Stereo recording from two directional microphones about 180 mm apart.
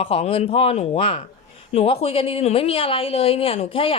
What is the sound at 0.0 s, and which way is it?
Speech, 35° left (ahead or behind).